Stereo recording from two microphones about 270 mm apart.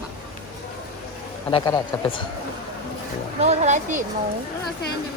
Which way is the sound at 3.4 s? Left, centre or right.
Right.